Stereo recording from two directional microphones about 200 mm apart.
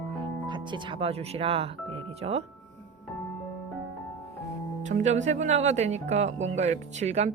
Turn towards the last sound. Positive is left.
turn(degrees=-35)  # may be behind; listen again after turning